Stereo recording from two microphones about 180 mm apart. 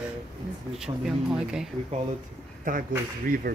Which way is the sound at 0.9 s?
25° right (ahead or behind).